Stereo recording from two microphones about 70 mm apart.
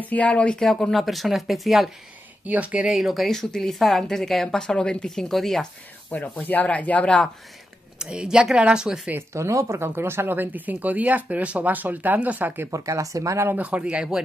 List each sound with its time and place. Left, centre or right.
0.0 s speech: left; by 1.9 s centre
2.4 s speech: right
2.9 s speech: centre
6.0 s speech: left
8.0 s speech: centre
9.3 s speech: right
9.8 s speech: right
12.7 s speech: right
13.6 s speech: centre